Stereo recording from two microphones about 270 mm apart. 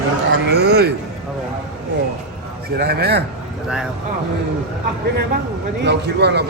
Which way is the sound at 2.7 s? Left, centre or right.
Right.